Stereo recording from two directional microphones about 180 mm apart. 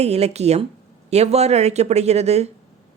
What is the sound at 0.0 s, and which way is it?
Speech, 35° right (ahead or behind).